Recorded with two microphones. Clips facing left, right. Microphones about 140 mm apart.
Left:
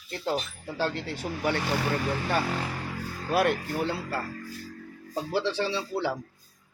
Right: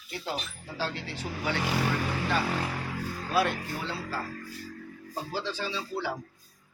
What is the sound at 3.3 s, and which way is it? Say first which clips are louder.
Speech: left 3 dB; 55° left (ahead or behind).